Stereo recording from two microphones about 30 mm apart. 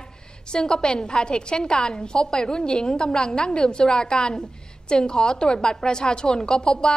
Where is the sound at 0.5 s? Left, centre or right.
Left.